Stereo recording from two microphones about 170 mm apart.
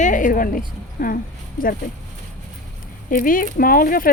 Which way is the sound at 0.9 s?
55° left (ahead or behind).